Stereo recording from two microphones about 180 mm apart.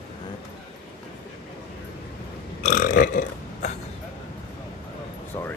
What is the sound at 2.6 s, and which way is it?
Burping, 45° left (ahead or behind).